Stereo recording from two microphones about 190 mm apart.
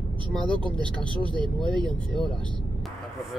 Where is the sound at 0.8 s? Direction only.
25° right (ahead or behind).